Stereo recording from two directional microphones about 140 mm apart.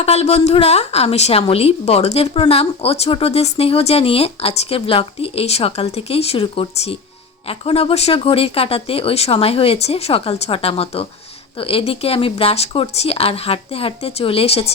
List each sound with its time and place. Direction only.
0.0 s a woman's voice: 50° left (ahead or behind)